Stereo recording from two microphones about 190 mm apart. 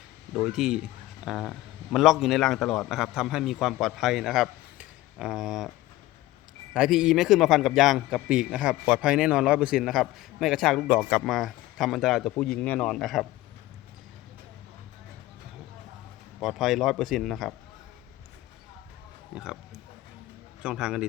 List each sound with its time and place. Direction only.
0.3 s a man's voice: centre (ahead or behind)
6.7 s a man's voice: 5° right (ahead or behind)
16.4 s a man's voice: centre (ahead or behind)
19.3 s oink: 5° right (ahead or behind)
20.6 s a man's voice: 5° right (ahead or behind)